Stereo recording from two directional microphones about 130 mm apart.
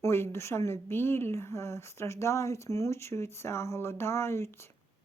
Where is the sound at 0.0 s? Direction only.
20° left (ahead or behind).